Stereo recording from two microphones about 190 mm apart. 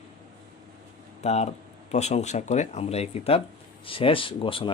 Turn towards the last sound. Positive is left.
turn(degrees=30)  # may be behind; listen again after turning